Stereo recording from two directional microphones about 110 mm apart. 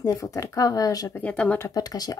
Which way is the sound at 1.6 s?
35° left (ahead or behind).